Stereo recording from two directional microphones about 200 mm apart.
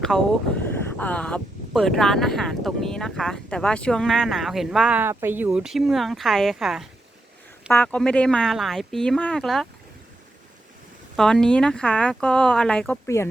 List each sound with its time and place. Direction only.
0.1 s speech: centre (ahead or behind)
11.2 s speech: 5° left (ahead or behind)